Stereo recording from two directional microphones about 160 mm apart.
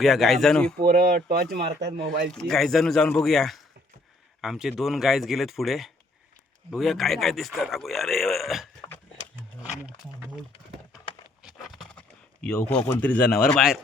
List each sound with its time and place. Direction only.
0.0 s a man's voice: centre (ahead or behind)
0.8 s speech: 65° right (ahead or behind)
2.3 s a man's voice: 5° left (ahead or behind)
11.5 s a sound: centre (ahead or behind)
13.0 s speech: 10° left (ahead or behind)
13.5 s a man's voice: centre (ahead or behind)